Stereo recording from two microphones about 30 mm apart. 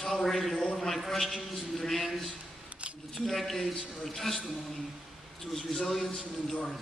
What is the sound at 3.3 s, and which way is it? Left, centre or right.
A man's voice, centre.